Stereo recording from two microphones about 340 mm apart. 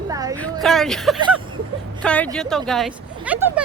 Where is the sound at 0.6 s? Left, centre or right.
Centre.